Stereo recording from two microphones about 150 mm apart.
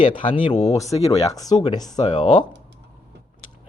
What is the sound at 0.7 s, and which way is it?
Speech, 25° left (ahead or behind).